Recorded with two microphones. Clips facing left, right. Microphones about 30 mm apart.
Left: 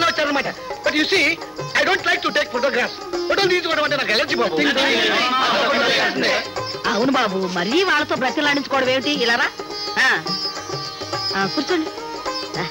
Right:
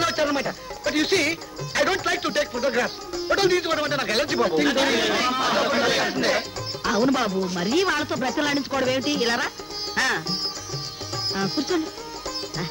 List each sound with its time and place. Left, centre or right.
0.0 s speech: left
9.9 s music: left
11.3 s music: left